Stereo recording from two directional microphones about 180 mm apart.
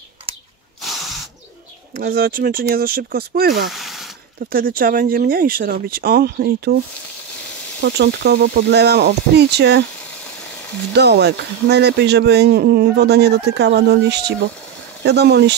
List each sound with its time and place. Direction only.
2.0 s speech: 55° right (ahead or behind)
3.7 s a sound: centre (ahead or behind)
4.5 s speech: 55° right (ahead or behind)
7.8 s speech: 65° right (ahead or behind)
11.0 s speech: 65° right (ahead or behind)